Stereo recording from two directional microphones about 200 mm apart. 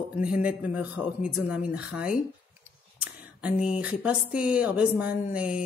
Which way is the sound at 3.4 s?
5° right (ahead or behind).